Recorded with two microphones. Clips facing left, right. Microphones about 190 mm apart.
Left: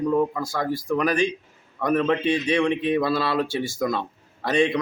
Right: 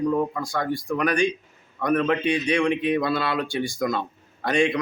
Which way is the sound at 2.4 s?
20° left (ahead or behind).